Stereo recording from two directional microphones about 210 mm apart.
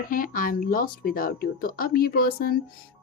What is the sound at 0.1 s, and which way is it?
Speech, 40° left (ahead or behind).